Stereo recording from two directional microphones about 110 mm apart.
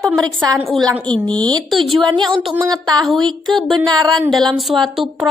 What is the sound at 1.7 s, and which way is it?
Speech, centre (ahead or behind).